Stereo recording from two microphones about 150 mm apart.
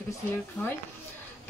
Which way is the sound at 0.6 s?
15° left (ahead or behind).